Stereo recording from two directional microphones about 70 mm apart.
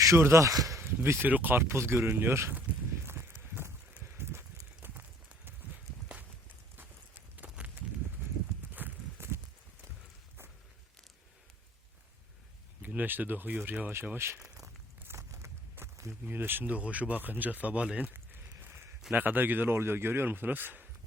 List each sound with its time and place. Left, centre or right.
0.2 s speech: right
0.8 s a sound: right
1.3 s speech: right
3.1 s horse: right
6.7 s clip-clop: right
8.7 s horse: right
12.8 s speech: right
14.3 s walk: centre
15.0 s a sound: right
15.8 s walk: right
16.2 s speech: right
18.4 s a sound: right
19.1 s speech: right